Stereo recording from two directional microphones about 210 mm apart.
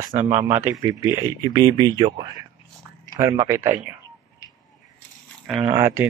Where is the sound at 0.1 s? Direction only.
35° right (ahead or behind).